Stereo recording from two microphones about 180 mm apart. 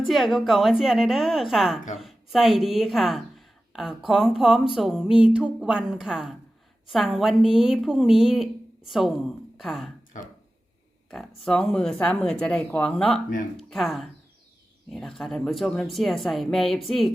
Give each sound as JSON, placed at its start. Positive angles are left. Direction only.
{"t": 0.0, "sound": "a woman's voice", "side_deg": 0}
{"t": 11.4, "sound": "a woman's voice", "side_deg": 5}